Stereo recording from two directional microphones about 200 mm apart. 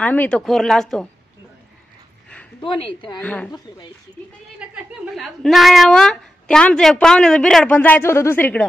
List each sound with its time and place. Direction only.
0.0 s a woman's voice: 10° left (ahead or behind)
2.6 s speech: 25° left (ahead or behind)
3.2 s speech: 5° left (ahead or behind)
4.7 s a woman's voice: centre (ahead or behind)